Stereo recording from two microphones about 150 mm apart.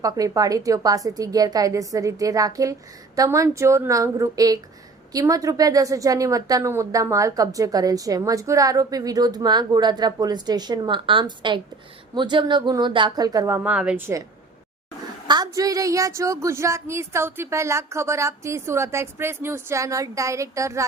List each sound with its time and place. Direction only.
0.0 s a woman's voice: 25° right (ahead or behind)
13.7 s a woman's voice: 10° right (ahead or behind)
15.3 s a woman's voice: 25° right (ahead or behind)